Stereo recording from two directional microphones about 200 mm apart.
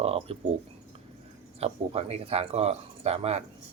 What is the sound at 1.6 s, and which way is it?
Speech, 30° right (ahead or behind).